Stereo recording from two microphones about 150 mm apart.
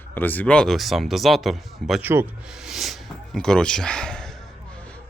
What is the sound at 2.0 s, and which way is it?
Speech, 15° right (ahead or behind).